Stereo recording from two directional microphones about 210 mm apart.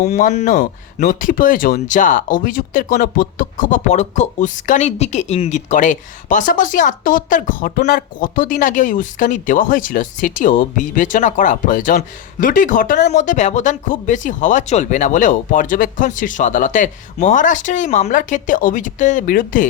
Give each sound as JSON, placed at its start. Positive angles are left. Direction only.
{"t": 0.0, "sound": "speech", "side_deg": 35}